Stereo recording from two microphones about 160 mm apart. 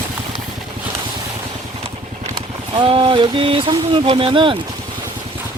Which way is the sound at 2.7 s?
30° right (ahead or behind).